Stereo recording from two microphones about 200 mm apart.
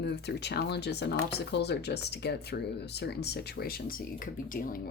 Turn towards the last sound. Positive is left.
turn(degrees=50)  # may be behind; listen again after turning